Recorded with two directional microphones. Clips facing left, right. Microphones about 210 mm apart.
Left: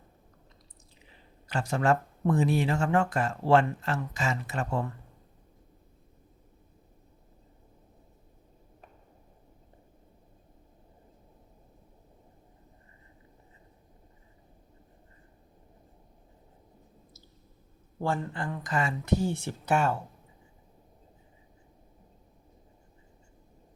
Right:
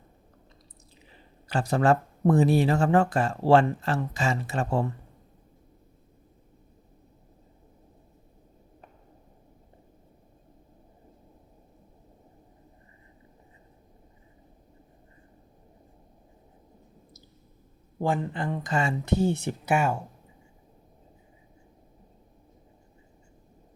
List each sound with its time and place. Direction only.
1.5 s speech: 35° right (ahead or behind)
18.0 s speech: 20° right (ahead or behind)